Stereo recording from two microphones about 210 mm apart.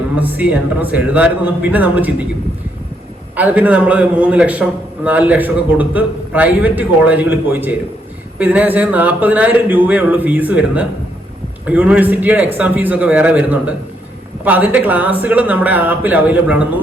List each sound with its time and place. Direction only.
0.2 s a man's voice: 10° right (ahead or behind)
3.3 s a man's voice: 5° right (ahead or behind)